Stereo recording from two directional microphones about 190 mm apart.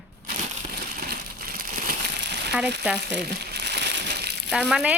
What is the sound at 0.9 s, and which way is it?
Crumpling, 50° right (ahead or behind).